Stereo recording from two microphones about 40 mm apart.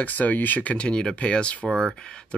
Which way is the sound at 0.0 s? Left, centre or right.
Left.